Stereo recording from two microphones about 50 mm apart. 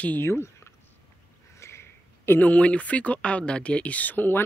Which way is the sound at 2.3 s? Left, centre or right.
Left.